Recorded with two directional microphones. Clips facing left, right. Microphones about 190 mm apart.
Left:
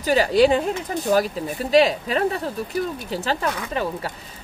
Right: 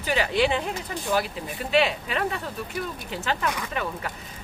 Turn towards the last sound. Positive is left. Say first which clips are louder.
# left 5 dB
turn(degrees=35)  # may be behind; listen again after turning